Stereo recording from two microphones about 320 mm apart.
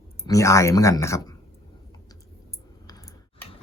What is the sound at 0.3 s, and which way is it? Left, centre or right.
Speech, centre.